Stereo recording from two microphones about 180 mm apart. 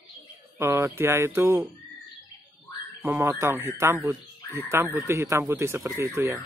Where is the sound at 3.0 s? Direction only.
10° right (ahead or behind).